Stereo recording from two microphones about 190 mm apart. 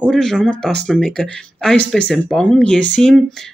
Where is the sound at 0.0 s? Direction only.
Centre (ahead or behind).